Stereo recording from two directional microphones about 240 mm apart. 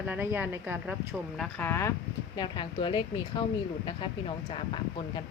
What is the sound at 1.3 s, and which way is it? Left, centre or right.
Speech, centre.